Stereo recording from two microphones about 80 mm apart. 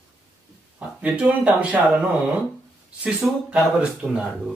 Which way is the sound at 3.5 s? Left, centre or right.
Centre.